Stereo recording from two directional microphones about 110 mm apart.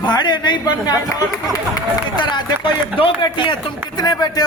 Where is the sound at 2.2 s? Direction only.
45° left (ahead or behind).